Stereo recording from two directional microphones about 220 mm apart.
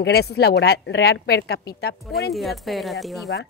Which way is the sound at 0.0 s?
50° left (ahead or behind).